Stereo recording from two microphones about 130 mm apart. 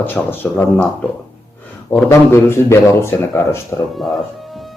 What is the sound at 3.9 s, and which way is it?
Speech, centre (ahead or behind).